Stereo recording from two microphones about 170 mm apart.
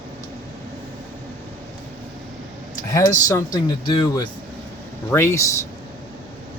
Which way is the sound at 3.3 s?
25° left (ahead or behind).